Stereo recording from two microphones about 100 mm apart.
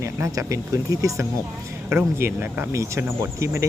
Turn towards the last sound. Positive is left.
turn(degrees=-30)  # may be behind; listen again after turning